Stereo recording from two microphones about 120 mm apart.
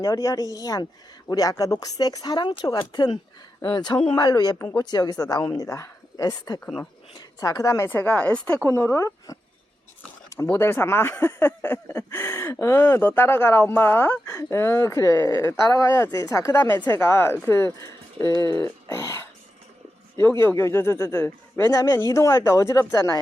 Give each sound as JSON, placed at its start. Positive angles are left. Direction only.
{"t": 0.0, "sound": "speech", "side_deg": 30}
{"t": 6.6, "sound": "speech", "side_deg": 5}
{"t": 7.2, "sound": "a woman's voice", "side_deg": 30}
{"t": 7.9, "sound": "speech", "side_deg": 15}
{"t": 8.6, "sound": "speech", "side_deg": 20}
{"t": 20.4, "sound": "speech", "side_deg": 20}